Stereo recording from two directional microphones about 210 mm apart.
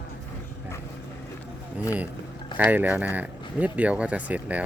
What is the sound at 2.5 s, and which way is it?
Speech, 10° right (ahead or behind).